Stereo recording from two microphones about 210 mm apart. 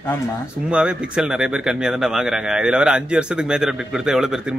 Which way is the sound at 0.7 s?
5° right (ahead or behind).